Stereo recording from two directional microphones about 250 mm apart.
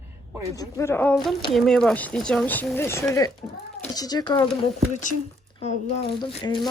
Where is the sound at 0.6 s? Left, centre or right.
Centre.